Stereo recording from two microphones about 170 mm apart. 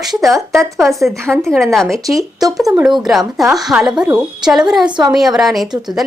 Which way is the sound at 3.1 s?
Centre (ahead or behind).